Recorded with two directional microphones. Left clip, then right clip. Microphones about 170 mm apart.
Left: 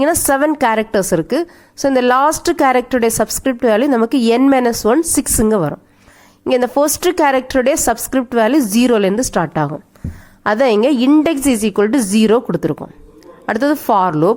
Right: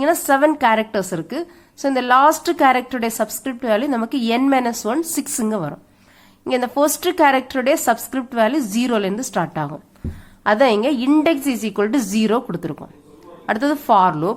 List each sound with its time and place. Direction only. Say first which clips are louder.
0.0 s a woman's voice: left 2 dB; 35° left (ahead or behind)